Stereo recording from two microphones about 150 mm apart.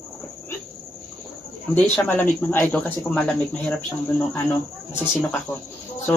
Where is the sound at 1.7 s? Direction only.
15° left (ahead or behind).